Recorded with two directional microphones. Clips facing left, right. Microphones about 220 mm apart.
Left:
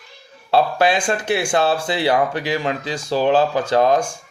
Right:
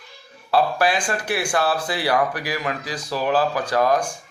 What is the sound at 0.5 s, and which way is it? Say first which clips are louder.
Speech: left 3 dB; 25° left (ahead or behind).